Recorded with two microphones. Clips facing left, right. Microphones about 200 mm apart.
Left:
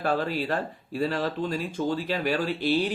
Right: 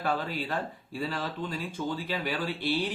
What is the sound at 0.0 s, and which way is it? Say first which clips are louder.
Speech: left 5 dB; 45° left (ahead or behind).